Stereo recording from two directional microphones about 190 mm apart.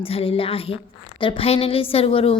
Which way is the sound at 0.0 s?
30° left (ahead or behind).